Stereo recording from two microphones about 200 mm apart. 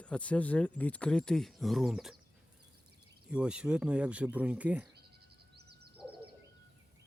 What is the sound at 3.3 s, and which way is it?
Speech, 5° right (ahead or behind).